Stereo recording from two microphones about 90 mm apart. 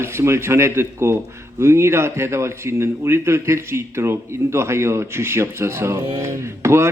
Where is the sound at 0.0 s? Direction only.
30° right (ahead or behind).